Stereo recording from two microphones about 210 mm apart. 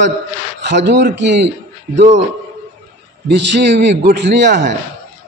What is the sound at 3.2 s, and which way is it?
A man's voice, 55° right (ahead or behind).